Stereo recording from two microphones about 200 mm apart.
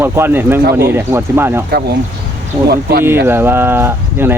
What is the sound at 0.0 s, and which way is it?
Speech, 10° right (ahead or behind).